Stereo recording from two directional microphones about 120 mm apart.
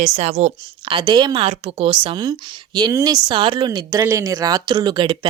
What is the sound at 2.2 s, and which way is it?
Speech, 35° right (ahead or behind).